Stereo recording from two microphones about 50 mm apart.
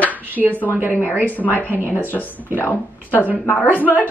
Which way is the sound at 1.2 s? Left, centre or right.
Left.